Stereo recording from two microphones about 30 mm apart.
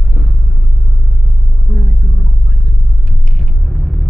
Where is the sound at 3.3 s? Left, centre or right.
Centre.